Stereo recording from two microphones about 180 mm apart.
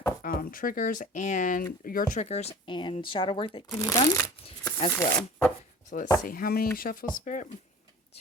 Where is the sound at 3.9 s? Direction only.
15° left (ahead or behind).